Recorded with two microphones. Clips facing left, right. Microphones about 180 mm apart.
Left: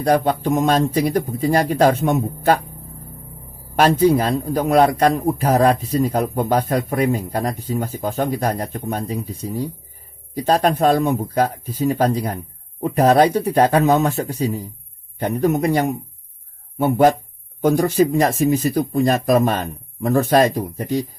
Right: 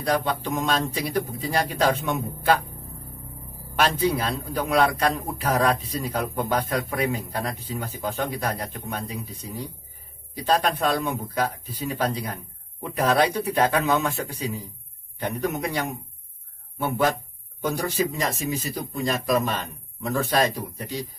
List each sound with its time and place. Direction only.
0.0 s a man's voice: 45° left (ahead or behind)
3.7 s a man's voice: 45° left (ahead or behind)
16.7 s a man's voice: 50° left (ahead or behind)